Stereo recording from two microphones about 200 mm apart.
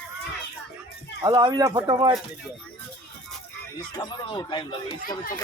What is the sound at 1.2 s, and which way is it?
Speech, 20° right (ahead or behind).